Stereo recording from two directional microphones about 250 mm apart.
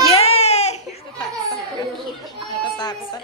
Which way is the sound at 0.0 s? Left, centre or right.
Left.